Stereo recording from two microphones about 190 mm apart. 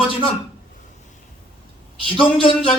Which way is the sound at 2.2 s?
30° left (ahead or behind).